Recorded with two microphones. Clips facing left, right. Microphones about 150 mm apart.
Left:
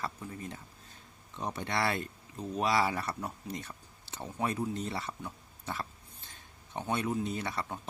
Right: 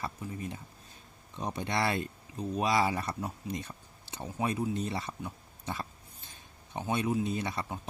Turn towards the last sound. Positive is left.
turn(degrees=-15)  # may be behind; listen again after turning